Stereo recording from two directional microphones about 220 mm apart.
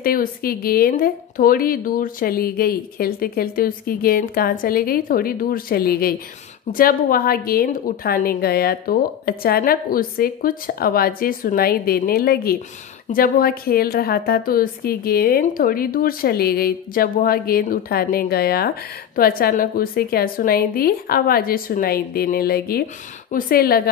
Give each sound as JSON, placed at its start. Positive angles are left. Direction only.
{"t": 0.0, "sound": "a woman's voice", "side_deg": 40}